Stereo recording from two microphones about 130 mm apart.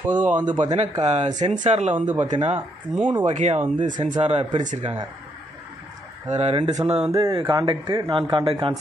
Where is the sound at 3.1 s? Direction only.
40° right (ahead or behind).